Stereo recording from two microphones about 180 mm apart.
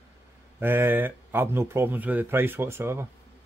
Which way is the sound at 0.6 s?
10° right (ahead or behind).